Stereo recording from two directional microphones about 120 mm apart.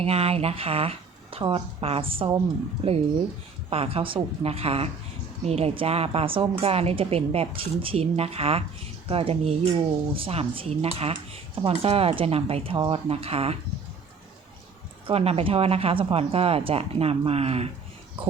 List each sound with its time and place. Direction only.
0.0 s a woman's voice: 60° right (ahead or behind)
15.0 s a woman's voice: 55° right (ahead or behind)
18.2 s speech: 50° right (ahead or behind)